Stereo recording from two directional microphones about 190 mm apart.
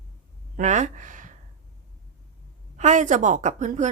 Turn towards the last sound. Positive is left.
turn(degrees=-40)  # may be behind; listen again after turning